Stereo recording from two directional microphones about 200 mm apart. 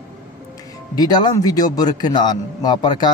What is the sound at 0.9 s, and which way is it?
A man's voice, 20° left (ahead or behind).